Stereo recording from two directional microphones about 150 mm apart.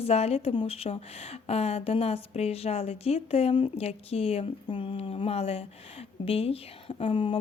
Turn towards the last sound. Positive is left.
turn(degrees=35)  # may be behind; listen again after turning